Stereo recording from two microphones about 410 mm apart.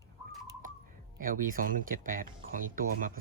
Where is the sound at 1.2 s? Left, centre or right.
Centre.